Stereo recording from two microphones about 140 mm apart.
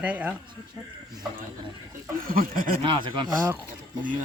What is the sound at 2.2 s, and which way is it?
Speech, 90° right.